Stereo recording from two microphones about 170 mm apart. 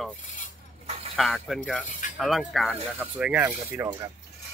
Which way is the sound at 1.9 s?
50° left (ahead or behind).